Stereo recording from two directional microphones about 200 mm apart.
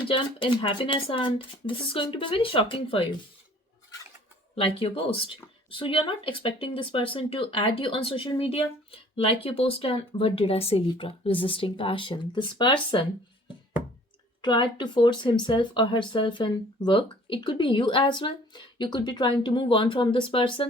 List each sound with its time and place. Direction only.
0.1 s speech: 25° left (ahead or behind)
4.5 s speech: 30° left (ahead or behind)
14.4 s speech: 25° left (ahead or behind)